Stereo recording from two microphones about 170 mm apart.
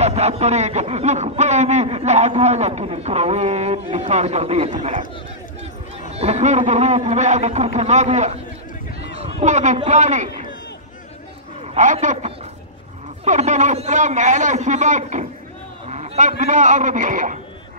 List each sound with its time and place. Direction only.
0.0 s a man's voice: 40° right (ahead or behind)
9.1 s a sound: 40° right (ahead or behind)
9.8 s a man's voice: 45° right (ahead or behind)
11.6 s a man's voice: 40° right (ahead or behind)